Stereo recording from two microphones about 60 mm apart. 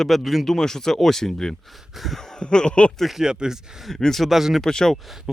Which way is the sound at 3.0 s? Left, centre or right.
Centre.